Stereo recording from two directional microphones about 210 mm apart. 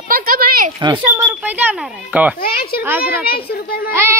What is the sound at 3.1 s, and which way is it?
Speech, 45° left (ahead or behind).